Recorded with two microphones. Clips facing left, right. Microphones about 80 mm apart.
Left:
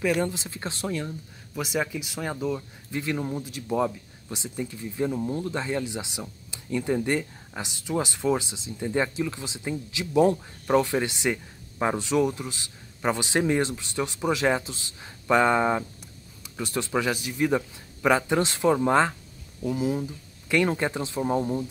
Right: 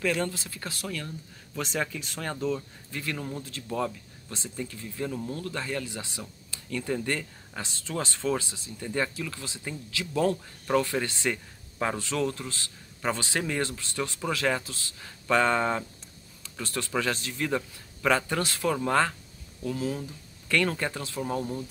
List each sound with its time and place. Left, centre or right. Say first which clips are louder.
0.0 s a man's voice: left 3 dB; centre